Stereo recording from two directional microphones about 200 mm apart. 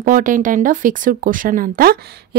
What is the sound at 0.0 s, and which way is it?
A woman's voice, 40° right (ahead or behind).